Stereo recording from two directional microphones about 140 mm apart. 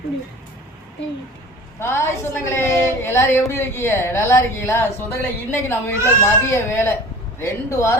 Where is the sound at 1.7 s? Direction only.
20° left (ahead or behind).